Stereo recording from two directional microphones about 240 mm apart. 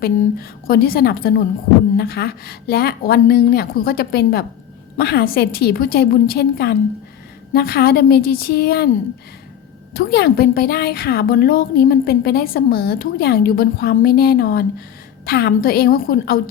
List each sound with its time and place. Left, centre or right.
0.0 s a woman's voice: left
9.9 s a woman's voice: left